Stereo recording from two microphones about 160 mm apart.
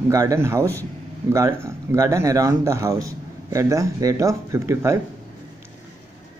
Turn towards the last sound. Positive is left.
turn(degrees=-20)  # may be behind; listen again after turning